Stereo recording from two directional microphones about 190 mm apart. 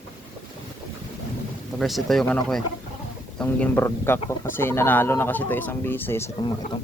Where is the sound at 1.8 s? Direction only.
Centre (ahead or behind).